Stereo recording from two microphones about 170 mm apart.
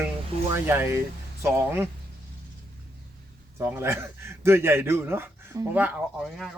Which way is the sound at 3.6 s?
15° right (ahead or behind).